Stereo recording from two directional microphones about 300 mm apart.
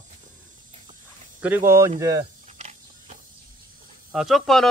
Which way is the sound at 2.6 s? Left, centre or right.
Right.